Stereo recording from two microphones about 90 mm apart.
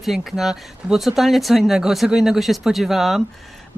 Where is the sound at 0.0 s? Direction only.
Centre (ahead or behind).